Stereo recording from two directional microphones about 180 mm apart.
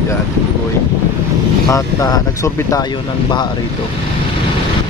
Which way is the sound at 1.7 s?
20° left (ahead or behind).